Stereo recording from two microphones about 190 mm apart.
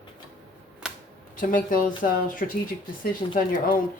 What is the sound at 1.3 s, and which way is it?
Speech, 45° left (ahead or behind).